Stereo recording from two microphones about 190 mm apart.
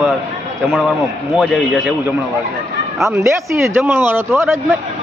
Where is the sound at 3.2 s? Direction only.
15° right (ahead or behind).